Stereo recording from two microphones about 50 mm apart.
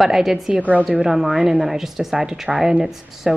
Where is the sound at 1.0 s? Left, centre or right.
Centre.